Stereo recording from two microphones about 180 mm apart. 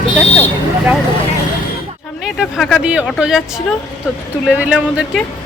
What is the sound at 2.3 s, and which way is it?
Speech, centre (ahead or behind).